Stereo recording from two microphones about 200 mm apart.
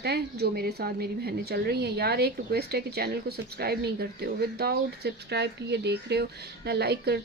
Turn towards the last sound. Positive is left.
turn(degrees=-55)  # may be behind; listen again after turning